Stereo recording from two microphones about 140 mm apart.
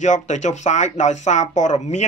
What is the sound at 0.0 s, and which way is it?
Speech, 60° left (ahead or behind).